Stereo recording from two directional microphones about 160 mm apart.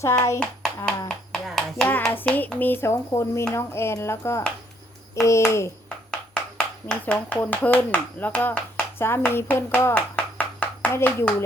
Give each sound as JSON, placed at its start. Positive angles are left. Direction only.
{"t": 0.0, "sound": "hands", "side_deg": 20}
{"t": 0.9, "sound": "speech", "side_deg": 5}
{"t": 5.2, "sound": "hands", "side_deg": 20}
{"t": 5.5, "sound": "speech", "side_deg": 15}
{"t": 6.8, "sound": "speech", "side_deg": 10}